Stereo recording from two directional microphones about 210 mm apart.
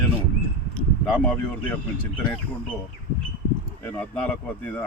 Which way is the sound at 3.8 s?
5° left (ahead or behind).